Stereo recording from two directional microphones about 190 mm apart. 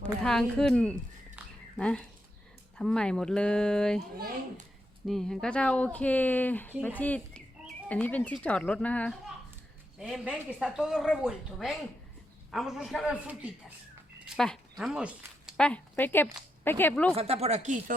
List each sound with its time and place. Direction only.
0.0 s a woman's voice: 5° left (ahead or behind)
1.4 s a sound: 10° right (ahead or behind)
1.7 s speech: 5° left (ahead or behind)
5.0 s speech: centre (ahead or behind)
10.0 s speech: 5° right (ahead or behind)
17.2 s speech: 35° right (ahead or behind)